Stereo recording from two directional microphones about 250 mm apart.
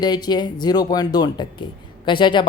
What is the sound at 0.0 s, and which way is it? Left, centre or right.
Speech, centre.